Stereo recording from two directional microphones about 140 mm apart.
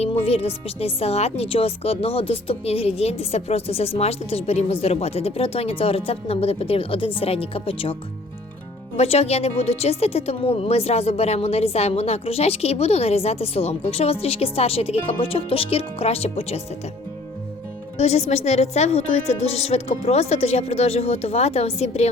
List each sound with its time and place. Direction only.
0.0 s a woman's voice: 45° left (ahead or behind)
9.0 s a woman's voice: 50° left (ahead or behind)
17.9 s a woman's voice: 50° left (ahead or behind)